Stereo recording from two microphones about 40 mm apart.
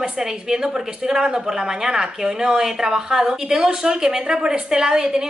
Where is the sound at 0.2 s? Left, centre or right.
Centre.